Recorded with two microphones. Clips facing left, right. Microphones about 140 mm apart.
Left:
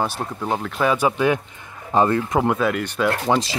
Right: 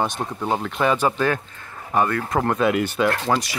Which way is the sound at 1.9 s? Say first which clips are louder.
Left 3 dB; 25° left (ahead or behind).